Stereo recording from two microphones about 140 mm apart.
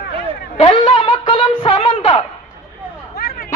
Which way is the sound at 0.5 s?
45° left (ahead or behind).